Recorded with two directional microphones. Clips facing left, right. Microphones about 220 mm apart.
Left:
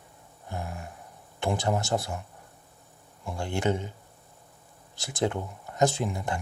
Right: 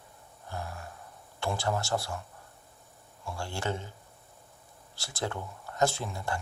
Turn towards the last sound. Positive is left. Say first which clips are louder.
# left 4 dB
turn(degrees=20)  # may be behind; listen again after turning